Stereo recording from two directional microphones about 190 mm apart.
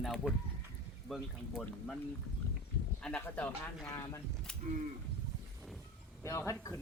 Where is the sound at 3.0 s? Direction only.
10° left (ahead or behind).